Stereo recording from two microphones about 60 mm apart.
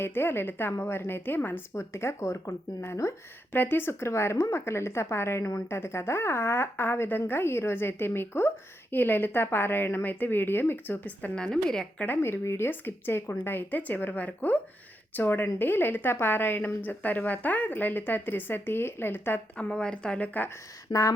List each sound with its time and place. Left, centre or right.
0.0 s a woman's voice: left
1.7 s a woman's voice: left
3.5 s a woman's voice: left
11.5 s a woman's voice: centre
11.9 s a woman's voice: left
19.5 s a woman's voice: centre